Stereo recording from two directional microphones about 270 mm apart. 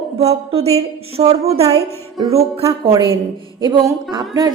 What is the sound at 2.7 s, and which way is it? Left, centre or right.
Music, centre.